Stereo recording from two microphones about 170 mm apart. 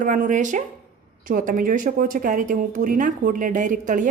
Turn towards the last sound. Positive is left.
turn(degrees=-50)  # may be behind; listen again after turning